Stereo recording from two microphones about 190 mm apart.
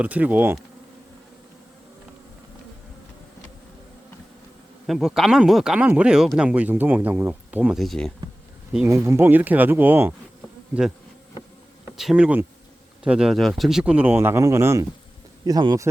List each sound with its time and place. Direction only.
0.0 s speech: 10° right (ahead or behind)
4.9 s speech: centre (ahead or behind)
8.9 s speech: 15° right (ahead or behind)
11.9 s speech: 5° right (ahead or behind); by 15.9 s 20° right (ahead or behind)